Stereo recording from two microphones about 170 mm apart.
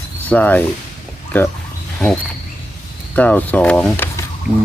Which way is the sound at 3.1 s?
10° left (ahead or behind).